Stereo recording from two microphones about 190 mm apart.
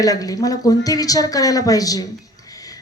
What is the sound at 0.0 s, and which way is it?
A woman's voice, 20° left (ahead or behind).